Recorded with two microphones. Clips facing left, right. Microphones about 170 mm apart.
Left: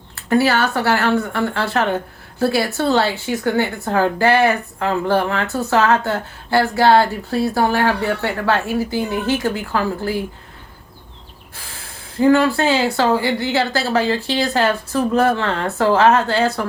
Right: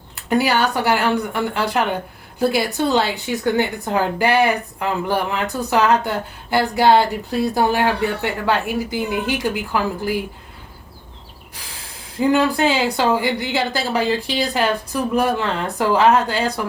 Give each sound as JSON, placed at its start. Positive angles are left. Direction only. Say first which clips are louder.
{"t": 0.2, "sound": "speech", "louder": "left 2 dB", "side_deg": -15}
{"t": 12.3, "sound": "speech", "louder": "left 2 dB", "side_deg": -15}